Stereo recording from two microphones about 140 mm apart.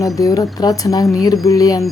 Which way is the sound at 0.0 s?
25° left (ahead or behind).